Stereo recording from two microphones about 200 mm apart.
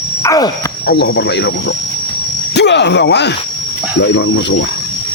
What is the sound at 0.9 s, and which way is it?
Speech, 60° left (ahead or behind).